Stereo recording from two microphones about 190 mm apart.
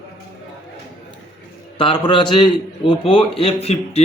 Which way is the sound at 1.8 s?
25° left (ahead or behind).